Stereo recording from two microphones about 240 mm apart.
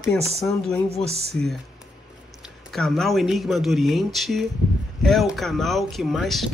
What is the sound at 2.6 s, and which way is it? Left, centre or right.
Speech, centre.